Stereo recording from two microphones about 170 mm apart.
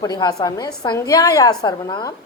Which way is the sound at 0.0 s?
20° left (ahead or behind).